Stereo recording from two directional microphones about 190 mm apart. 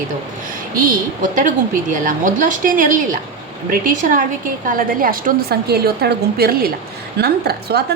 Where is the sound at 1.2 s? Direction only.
40° right (ahead or behind).